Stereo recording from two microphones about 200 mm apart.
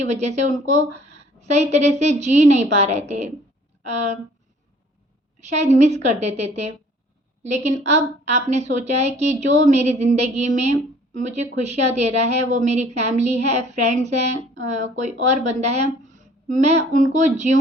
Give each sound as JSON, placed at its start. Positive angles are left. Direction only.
{"t": 0.0, "sound": "a woman's voice", "side_deg": -35}
{"t": 1.4, "sound": "a sound", "side_deg": -35}
{"t": 1.7, "sound": "a woman's voice", "side_deg": -35}
{"t": 5.4, "sound": "a woman's voice", "side_deg": -35}